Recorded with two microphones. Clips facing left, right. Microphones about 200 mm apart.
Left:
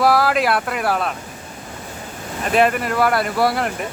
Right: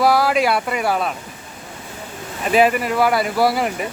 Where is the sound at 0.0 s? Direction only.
Centre (ahead or behind).